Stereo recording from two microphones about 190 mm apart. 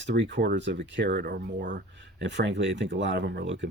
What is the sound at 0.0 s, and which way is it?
Speech, 70° right (ahead or behind).